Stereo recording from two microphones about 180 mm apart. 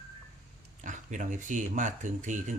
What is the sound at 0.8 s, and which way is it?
Speech, 45° right (ahead or behind).